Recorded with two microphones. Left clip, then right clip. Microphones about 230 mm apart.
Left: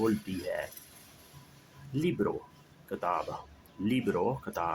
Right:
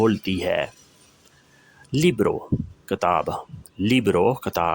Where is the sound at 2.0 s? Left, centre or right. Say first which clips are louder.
Right 11 dB; right.